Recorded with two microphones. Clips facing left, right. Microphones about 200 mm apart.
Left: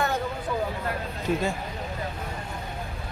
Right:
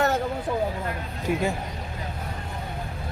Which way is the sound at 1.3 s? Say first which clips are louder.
Even; 15° right (ahead or behind).